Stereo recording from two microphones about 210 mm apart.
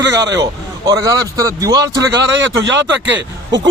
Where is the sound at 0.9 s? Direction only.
15° right (ahead or behind).